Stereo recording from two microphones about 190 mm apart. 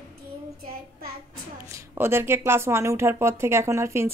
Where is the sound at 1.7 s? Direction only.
15° right (ahead or behind).